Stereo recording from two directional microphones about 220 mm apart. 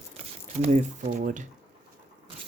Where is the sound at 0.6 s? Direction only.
30° right (ahead or behind).